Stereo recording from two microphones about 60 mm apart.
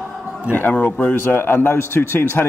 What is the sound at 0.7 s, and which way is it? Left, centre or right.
Speech, left.